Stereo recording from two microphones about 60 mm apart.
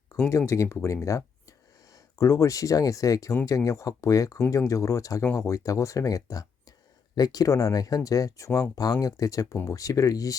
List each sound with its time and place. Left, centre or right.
0.3 s speech: left
7.2 s speech: left
8.7 s speech: left